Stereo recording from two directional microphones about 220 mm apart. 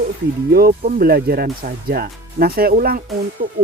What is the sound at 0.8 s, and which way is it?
Speech, 40° right (ahead or behind).